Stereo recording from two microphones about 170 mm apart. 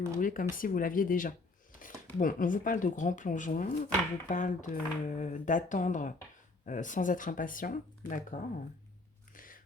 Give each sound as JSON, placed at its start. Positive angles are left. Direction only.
{"t": 0.2, "sound": "speech", "side_deg": 55}
{"t": 9.3, "sound": "biting", "side_deg": 55}